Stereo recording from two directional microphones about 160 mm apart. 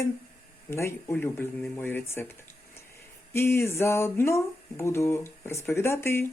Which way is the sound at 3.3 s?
15° left (ahead or behind).